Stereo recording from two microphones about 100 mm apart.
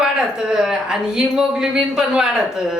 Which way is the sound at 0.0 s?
5° right (ahead or behind).